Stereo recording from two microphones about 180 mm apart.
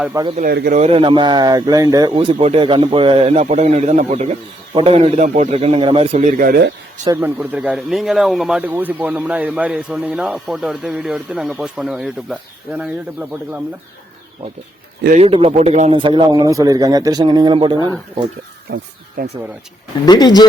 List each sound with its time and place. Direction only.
0.1 s speech: 20° right (ahead or behind)
0.7 s speech: 35° right (ahead or behind); by 6.7 s 55° right (ahead or behind)
7.0 s speech: 15° right (ahead or behind)
15.2 s speech: 35° right (ahead or behind)
19.2 s speech: 55° right (ahead or behind)
20.1 s speech: 20° left (ahead or behind)